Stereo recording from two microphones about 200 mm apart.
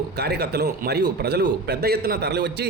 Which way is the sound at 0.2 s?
55° right (ahead or behind).